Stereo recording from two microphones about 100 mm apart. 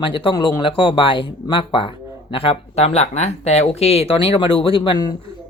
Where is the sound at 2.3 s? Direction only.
70° left (ahead or behind); by 5.1 s 50° left (ahead or behind).